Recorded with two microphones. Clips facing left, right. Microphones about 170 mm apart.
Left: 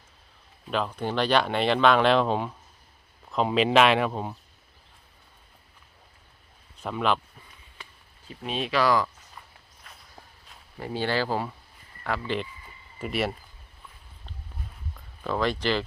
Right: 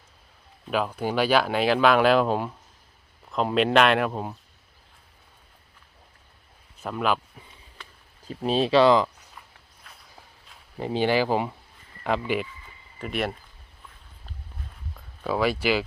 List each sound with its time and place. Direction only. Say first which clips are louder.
0.7 s speech: right 2 dB; 5° right (ahead or behind)
6.8 s speech: even; 5° right (ahead or behind)
8.3 s speech: right 8 dB; 35° right (ahead or behind)
9.8 s walk: even; centre (ahead or behind)
10.8 s speech: right 5 dB; 20° right (ahead or behind)
13.0 s speech: even; centre (ahead or behind)
14.9 s speech: right 2 dB; 5° right (ahead or behind)